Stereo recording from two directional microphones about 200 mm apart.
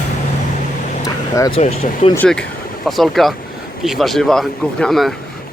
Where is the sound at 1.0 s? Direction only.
20° left (ahead or behind).